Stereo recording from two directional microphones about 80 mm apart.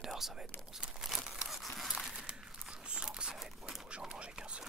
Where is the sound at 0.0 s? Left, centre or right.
Centre.